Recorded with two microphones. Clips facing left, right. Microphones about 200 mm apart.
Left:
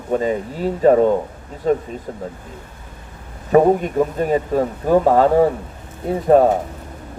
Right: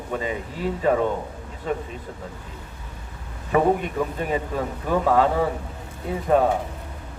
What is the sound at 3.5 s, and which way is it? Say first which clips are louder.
Speech: left 7 dB; 40° left (ahead or behind).